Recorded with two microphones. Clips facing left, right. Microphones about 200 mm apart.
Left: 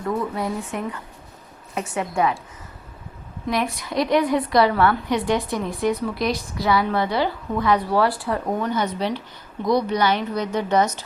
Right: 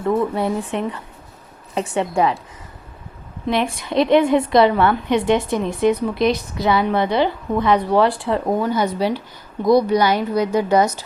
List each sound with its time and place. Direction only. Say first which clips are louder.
0.0 s a woman's voice: right 6 dB; 25° right (ahead or behind)
3.4 s a woman's voice: right 3 dB; 25° right (ahead or behind)
8.7 s speech: right 4 dB; 10° right (ahead or behind)